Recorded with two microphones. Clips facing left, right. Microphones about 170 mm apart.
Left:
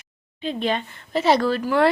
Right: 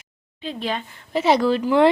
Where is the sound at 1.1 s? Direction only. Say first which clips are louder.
Right 1 dB; 15° right (ahead or behind).